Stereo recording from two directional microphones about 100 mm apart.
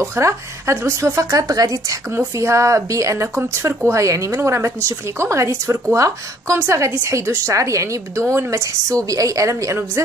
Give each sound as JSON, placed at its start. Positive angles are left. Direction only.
{"t": 0.0, "sound": "a woman's voice", "side_deg": -30}